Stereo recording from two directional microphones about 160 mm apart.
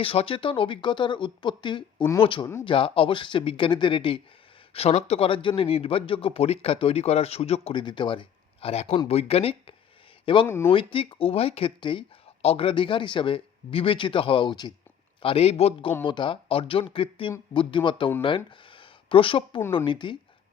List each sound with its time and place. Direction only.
0.0 s speech: 35° left (ahead or behind)
10.4 s speech: 15° left (ahead or behind)
10.7 s speech: 35° left (ahead or behind)